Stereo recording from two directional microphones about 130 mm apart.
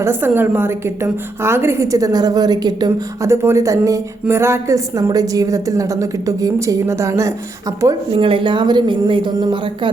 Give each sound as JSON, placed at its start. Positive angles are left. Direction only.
{"t": 0.0, "sound": "speech", "side_deg": -15}
{"t": 3.2, "sound": "speech", "side_deg": -20}
{"t": 8.1, "sound": "a woman's voice", "side_deg": -40}